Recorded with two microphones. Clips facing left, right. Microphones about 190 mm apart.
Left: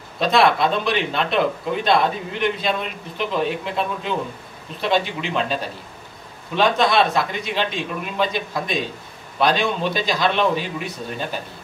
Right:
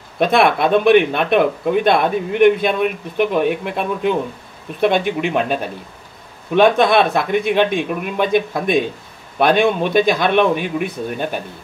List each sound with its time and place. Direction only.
0.2 s speech: 55° right (ahead or behind)